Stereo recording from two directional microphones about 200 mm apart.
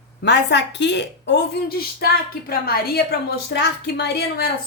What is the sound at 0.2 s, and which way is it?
A woman's voice, 60° left (ahead or behind).